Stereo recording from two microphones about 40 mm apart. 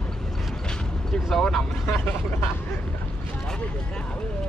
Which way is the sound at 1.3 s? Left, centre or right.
Centre.